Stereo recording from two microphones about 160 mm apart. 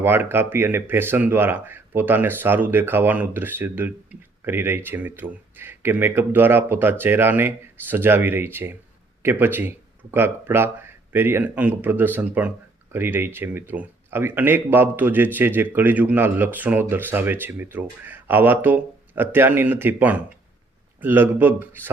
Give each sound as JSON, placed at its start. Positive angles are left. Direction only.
{"t": 0.0, "sound": "speech", "side_deg": -15}